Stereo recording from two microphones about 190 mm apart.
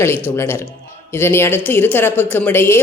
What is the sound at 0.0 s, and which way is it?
A man's voice, 15° left (ahead or behind).